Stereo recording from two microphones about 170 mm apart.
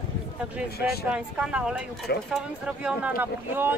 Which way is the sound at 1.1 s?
5° right (ahead or behind).